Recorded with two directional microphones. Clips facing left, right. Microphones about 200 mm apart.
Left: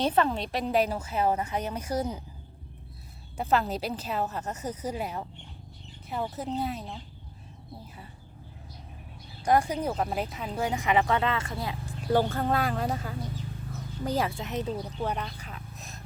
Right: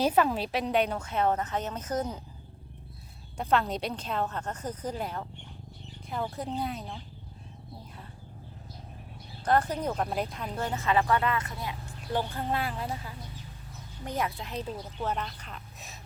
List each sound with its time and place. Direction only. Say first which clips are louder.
0.0 s a woman's voice: even; 5° right (ahead or behind); by 2.2 s 10° left (ahead or behind)
3.3 s a woman's voice: left 1 dB; 5° left (ahead or behind)
9.4 s a woman's voice: left 2 dB; 10° left (ahead or behind); by 11.9 s 30° left (ahead or behind)
12.4 s speech: left 4 dB; 45° left (ahead or behind)
14.0 s a woman's voice: left 4 dB; 30° left (ahead or behind); by 16.0 s centre (ahead or behind)